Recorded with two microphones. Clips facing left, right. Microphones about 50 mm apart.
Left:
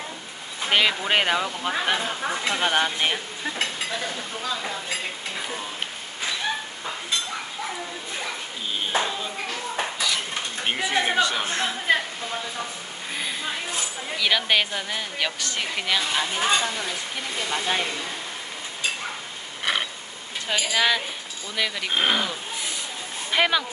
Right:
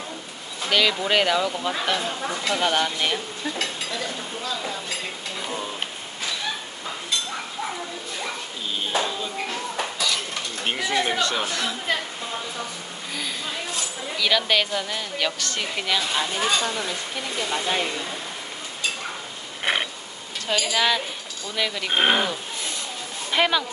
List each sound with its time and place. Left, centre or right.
0.7 s speech: left
8.9 s speech: centre
9.9 s dishes: centre
10.8 s speech: left
11.1 s a woman's voice: centre
11.4 s a woman's voice: left
13.1 s a woman's voice: centre
17.4 s a woman's voice: centre
20.5 s a woman's voice: centre
21.9 s speech: right
23.3 s speech: centre